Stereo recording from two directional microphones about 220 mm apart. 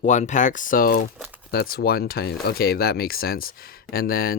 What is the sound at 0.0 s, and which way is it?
Speech, 35° left (ahead or behind).